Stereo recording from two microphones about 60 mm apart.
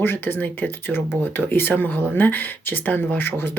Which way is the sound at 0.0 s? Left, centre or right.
Left.